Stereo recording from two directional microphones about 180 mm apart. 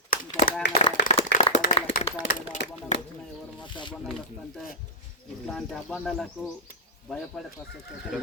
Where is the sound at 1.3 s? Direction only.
65° left (ahead or behind).